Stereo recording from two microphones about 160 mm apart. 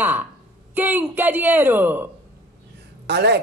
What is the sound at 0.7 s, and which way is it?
A woman's voice, 10° right (ahead or behind).